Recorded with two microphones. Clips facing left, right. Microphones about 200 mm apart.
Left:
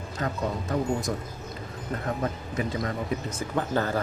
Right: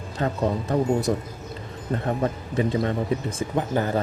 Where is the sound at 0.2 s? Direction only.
30° right (ahead or behind).